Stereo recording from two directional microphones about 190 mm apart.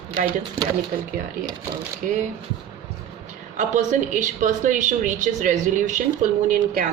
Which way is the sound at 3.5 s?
40° right (ahead or behind).